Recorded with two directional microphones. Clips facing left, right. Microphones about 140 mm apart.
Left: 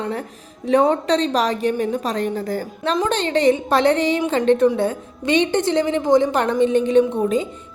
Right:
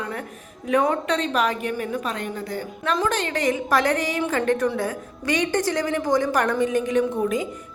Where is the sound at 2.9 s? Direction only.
30° left (ahead or behind).